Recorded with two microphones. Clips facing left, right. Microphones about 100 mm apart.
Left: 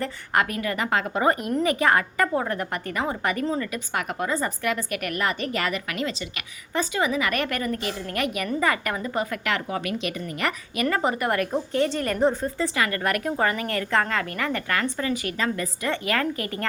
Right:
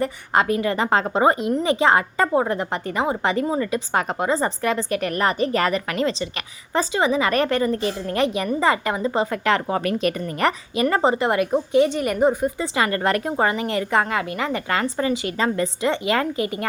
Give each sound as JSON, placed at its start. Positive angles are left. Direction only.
{"t": 0.0, "sound": "a woman's voice", "side_deg": -25}
{"t": 10.8, "sound": "a woman's voice", "side_deg": -25}